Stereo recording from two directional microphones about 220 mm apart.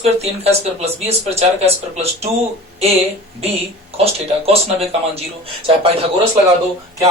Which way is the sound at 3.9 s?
25° right (ahead or behind).